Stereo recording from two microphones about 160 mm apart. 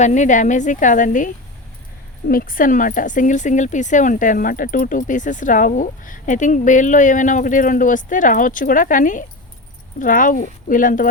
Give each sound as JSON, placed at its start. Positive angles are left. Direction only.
{"t": 0.0, "sound": "speech", "side_deg": 50}
{"t": 2.2, "sound": "speech", "side_deg": 65}